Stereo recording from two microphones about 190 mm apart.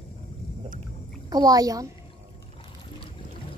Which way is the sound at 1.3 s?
20° right (ahead or behind).